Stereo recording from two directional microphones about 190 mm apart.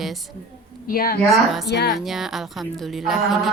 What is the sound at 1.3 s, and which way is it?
A woman's voice, centre (ahead or behind).